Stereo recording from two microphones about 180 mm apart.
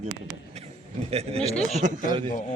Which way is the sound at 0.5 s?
35° right (ahead or behind).